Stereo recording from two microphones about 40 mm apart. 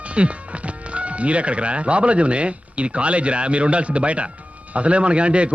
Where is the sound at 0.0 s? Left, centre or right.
Right.